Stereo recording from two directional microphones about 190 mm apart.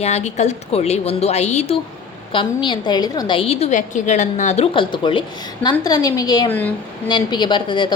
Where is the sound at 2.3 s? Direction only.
25° left (ahead or behind).